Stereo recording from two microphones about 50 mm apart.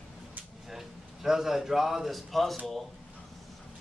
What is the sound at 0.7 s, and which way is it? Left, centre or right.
A man's voice, centre.